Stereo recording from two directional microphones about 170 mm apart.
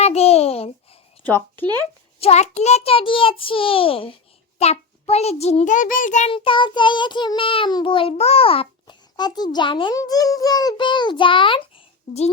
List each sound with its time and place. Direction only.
0.0 s a sound: 35° left (ahead or behind)
1.2 s a woman's voice: 10° left (ahead or behind)
2.2 s a child's voice: 40° left (ahead or behind)
6.3 s child singing: 30° left (ahead or behind)